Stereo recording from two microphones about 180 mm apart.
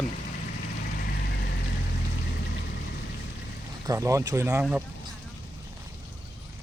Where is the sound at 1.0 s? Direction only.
55° left (ahead or behind).